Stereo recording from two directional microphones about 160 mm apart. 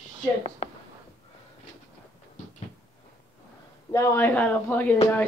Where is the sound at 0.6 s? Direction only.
40° left (ahead or behind).